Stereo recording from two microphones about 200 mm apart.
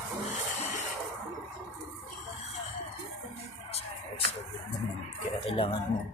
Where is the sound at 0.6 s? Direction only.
35° left (ahead or behind).